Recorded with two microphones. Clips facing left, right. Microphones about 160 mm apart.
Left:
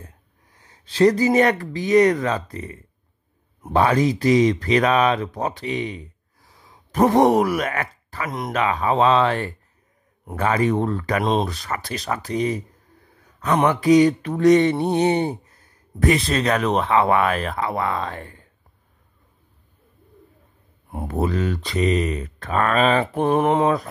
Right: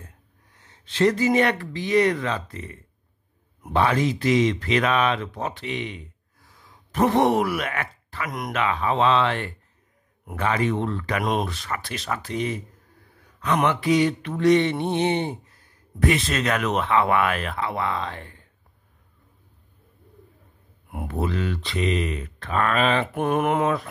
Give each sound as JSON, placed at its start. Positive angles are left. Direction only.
{"t": 0.6, "sound": "mantra", "side_deg": 35}
{"t": 6.7, "sound": "speech", "side_deg": 40}
{"t": 8.3, "sound": "speech", "side_deg": 30}
{"t": 8.6, "sound": "mantra", "side_deg": 40}
{"t": 13.7, "sound": "mantra", "side_deg": 40}
{"t": 21.1, "sound": "mantra", "side_deg": 40}